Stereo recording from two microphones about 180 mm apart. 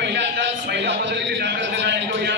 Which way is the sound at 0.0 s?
75° right (ahead or behind).